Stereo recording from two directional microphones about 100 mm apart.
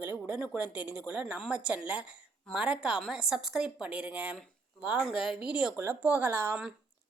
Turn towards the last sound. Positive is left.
turn(degrees=-25)  # may be behind; listen again after turning